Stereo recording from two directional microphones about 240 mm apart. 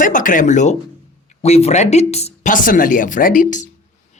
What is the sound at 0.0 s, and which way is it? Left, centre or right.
Speech, left.